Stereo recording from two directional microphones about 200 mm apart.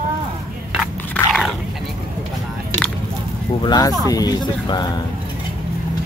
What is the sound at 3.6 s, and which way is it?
Speech, 20° left (ahead or behind).